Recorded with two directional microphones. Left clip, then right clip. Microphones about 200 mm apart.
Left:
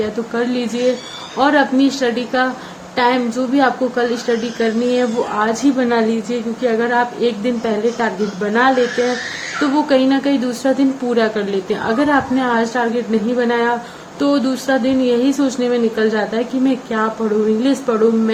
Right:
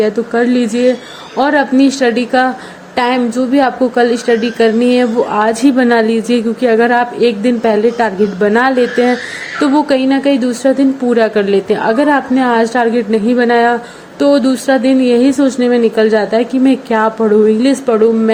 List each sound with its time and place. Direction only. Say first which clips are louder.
0.0 s a woman's voice: right 7 dB; 30° right (ahead or behind)